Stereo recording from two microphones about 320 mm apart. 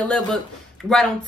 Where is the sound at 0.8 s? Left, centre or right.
Centre.